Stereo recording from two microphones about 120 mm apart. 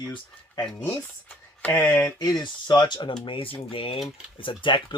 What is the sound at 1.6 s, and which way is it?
Speech, 15° left (ahead or behind).